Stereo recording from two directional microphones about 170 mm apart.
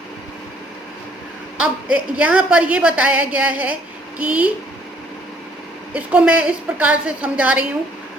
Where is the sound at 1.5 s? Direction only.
5° right (ahead or behind).